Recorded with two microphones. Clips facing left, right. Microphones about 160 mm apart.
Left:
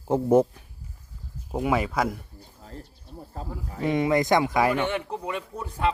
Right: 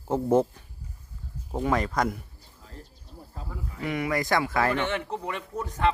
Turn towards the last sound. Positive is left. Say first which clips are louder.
# right 1 dB
turn(degrees=15)  # may be behind; listen again after turning